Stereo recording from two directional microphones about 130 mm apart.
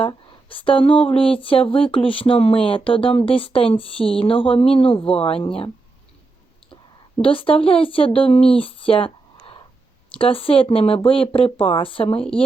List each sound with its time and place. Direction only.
0.0 s speech: 40° left (ahead or behind)
7.2 s speech: 45° left (ahead or behind)
10.2 s speech: 45° left (ahead or behind)